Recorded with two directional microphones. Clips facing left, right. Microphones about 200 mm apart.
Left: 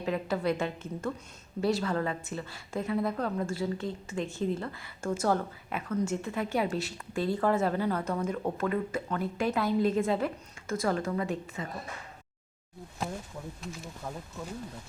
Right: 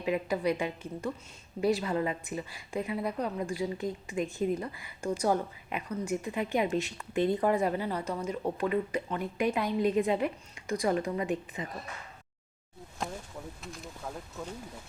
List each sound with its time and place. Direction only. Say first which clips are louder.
0.0 s speech: right 1 dB; 10° right (ahead or behind)
13.6 s speech: left 2 dB; centre (ahead or behind)